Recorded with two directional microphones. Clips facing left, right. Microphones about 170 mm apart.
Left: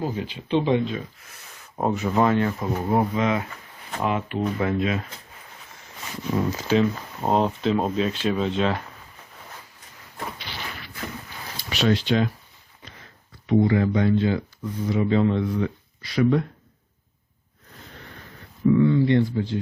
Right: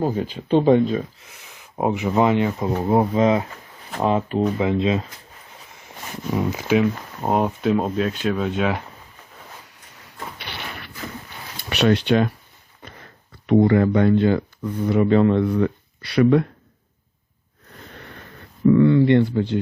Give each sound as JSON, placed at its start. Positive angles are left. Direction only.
{"t": 0.0, "sound": "speech", "side_deg": -45}
{"t": 1.8, "sound": "speech", "side_deg": -15}
{"t": 4.5, "sound": "speech", "side_deg": -20}
{"t": 6.3, "sound": "speech", "side_deg": -15}
{"t": 10.3, "sound": "a sound", "side_deg": -65}
{"t": 11.7, "sound": "speech", "side_deg": -65}
{"t": 13.5, "sound": "speech", "side_deg": -60}
{"t": 18.7, "sound": "speech", "side_deg": -70}